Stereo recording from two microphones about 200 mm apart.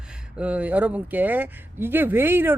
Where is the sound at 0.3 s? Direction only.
5° right (ahead or behind).